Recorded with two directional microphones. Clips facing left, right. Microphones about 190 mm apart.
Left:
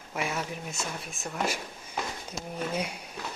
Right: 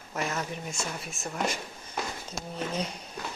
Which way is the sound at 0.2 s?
10° left (ahead or behind).